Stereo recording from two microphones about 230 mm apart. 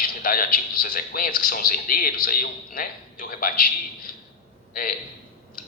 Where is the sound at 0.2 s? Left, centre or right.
Left.